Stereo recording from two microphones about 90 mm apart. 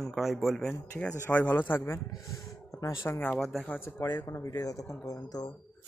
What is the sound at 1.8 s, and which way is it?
Speech, 40° left (ahead or behind).